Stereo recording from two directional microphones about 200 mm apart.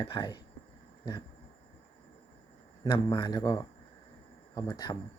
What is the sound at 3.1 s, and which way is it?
Speech, 20° left (ahead or behind).